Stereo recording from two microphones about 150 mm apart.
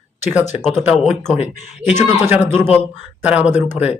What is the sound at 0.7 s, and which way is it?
Speech, 15° right (ahead or behind).